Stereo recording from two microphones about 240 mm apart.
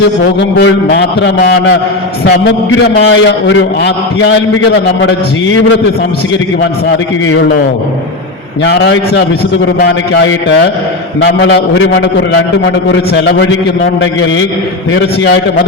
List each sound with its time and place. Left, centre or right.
0.0 s a man's voice: left
8.6 s a man's voice: left
11.3 s a man's voice: left